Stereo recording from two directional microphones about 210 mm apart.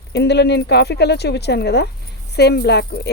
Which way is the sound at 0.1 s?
50° left (ahead or behind).